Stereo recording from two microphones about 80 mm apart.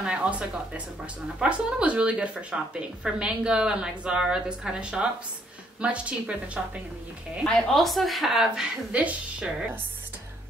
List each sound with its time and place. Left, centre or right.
0.0 s a woman's voice: centre
7.4 s speech: centre
8.9 s a woman's voice: centre